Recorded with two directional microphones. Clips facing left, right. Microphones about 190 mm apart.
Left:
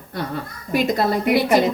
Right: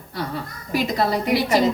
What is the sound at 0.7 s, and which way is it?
Speech, 55° left (ahead or behind).